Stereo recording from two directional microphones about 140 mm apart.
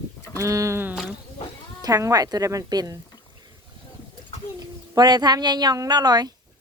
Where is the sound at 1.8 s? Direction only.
25° right (ahead or behind).